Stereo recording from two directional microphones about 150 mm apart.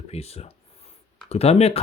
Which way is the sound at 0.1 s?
45° left (ahead or behind).